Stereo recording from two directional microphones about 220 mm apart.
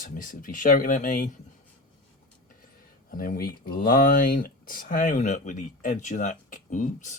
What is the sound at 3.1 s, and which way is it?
Speech, 40° left (ahead or behind).